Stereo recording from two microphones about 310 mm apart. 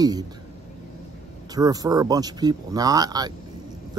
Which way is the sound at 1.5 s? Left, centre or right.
Centre.